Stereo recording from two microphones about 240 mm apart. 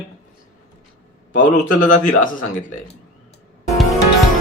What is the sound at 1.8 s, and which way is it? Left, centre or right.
A man's voice, left.